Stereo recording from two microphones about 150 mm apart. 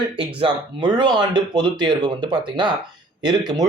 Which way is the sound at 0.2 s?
35° right (ahead or behind).